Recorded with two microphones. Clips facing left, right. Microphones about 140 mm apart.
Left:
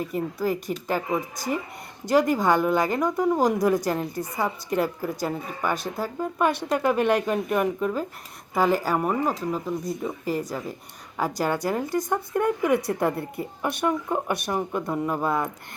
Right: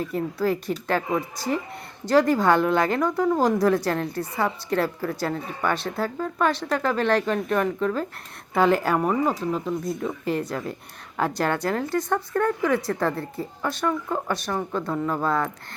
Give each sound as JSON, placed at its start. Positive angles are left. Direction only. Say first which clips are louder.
{"t": 0.0, "sound": "a woman's voice", "louder": "right 2 dB", "side_deg": 15}